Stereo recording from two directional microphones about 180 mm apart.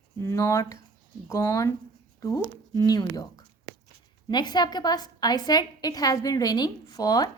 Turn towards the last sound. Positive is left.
turn(degrees=20)  # may be behind; listen again after turning